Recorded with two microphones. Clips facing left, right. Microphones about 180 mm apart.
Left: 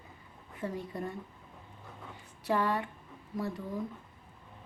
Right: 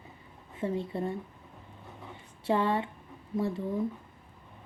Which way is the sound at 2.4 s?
25° right (ahead or behind).